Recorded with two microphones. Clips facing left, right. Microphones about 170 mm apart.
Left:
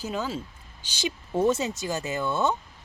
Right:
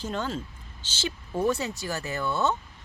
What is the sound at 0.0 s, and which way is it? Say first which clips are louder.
Speech: even; 5° left (ahead or behind).